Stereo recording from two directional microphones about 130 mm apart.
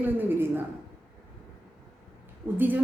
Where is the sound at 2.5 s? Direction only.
15° right (ahead or behind).